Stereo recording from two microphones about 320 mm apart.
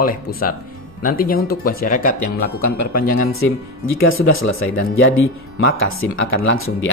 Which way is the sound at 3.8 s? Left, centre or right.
Left.